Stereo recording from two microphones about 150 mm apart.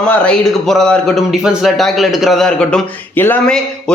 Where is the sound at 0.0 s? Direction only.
5° left (ahead or behind).